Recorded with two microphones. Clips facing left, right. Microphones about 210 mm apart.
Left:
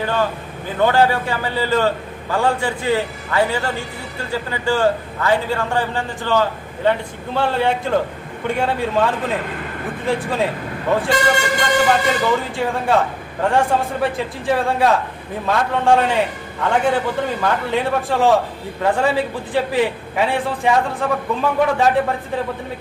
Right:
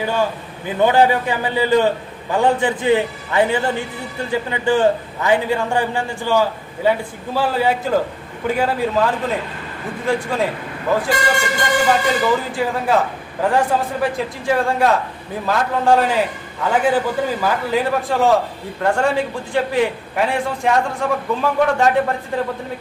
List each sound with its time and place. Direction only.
0.0 s a man's voice: 10° right (ahead or behind)